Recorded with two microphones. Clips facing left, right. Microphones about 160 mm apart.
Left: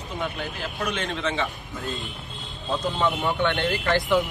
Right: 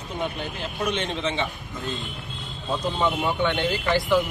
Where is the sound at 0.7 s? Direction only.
25° right (ahead or behind).